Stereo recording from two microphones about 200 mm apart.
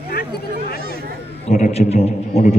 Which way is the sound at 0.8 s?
50° right (ahead or behind).